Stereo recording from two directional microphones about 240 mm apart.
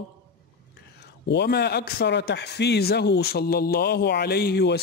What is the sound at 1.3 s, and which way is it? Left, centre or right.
A man's voice, left.